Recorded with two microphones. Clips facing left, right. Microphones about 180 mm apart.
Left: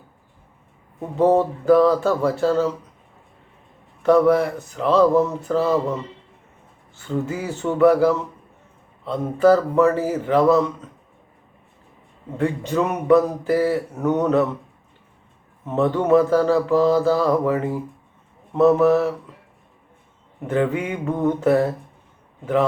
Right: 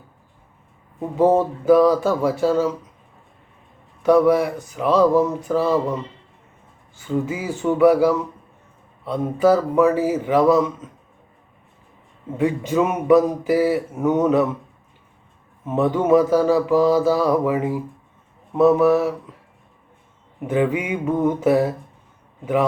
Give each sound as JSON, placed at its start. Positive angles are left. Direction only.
{"t": 1.2, "sound": "a man's voice", "side_deg": 0}
{"t": 4.0, "sound": "a man's voice", "side_deg": -5}
{"t": 7.0, "sound": "a man's voice", "side_deg": 0}
{"t": 12.4, "sound": "a man's voice", "side_deg": -5}
{"t": 15.6, "sound": "a man's voice", "side_deg": -5}
{"t": 20.4, "sound": "a man's voice", "side_deg": -5}